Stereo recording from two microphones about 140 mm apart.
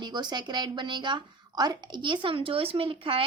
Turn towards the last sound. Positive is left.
turn(degrees=-40)  # may be behind; listen again after turning